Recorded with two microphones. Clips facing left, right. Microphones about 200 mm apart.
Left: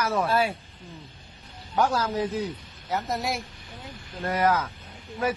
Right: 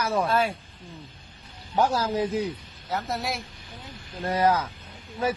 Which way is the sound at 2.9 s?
5° left (ahead or behind).